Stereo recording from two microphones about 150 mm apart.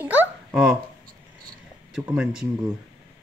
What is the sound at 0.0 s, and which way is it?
Babbling, 10° right (ahead or behind).